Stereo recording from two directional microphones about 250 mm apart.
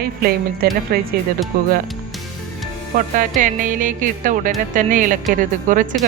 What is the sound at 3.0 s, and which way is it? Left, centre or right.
Speech, right.